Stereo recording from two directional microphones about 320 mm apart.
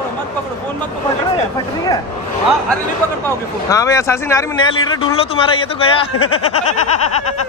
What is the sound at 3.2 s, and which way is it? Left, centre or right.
Speech, centre.